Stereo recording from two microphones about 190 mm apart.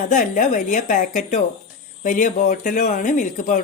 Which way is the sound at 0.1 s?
45° left (ahead or behind).